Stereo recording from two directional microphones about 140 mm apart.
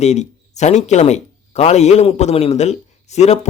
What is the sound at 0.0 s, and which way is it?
Speech, 55° left (ahead or behind).